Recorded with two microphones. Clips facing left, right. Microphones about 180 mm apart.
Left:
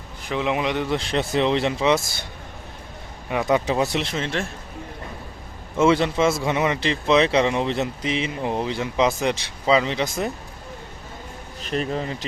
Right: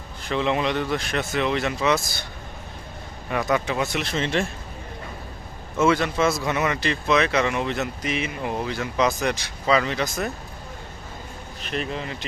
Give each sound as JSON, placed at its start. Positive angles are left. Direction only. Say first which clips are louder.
{"t": 0.2, "sound": "a man's voice", "louder": "even", "side_deg": 10}
{"t": 3.4, "sound": "speech", "louder": "left 4 dB", "side_deg": 30}
{"t": 4.1, "sound": "a man's voice", "louder": "right 2 dB", "side_deg": 0}
{"t": 5.8, "sound": "a man's voice", "louder": "left 2 dB", "side_deg": 25}
{"t": 11.6, "sound": "speech", "louder": "left 4 dB", "side_deg": 40}